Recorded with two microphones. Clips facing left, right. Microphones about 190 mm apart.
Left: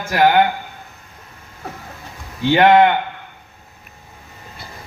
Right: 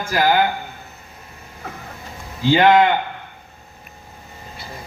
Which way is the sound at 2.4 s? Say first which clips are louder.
Left 2 dB; 65° left (ahead or behind).